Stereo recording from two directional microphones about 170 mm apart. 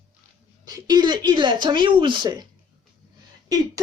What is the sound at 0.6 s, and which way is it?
Speech, 25° right (ahead or behind).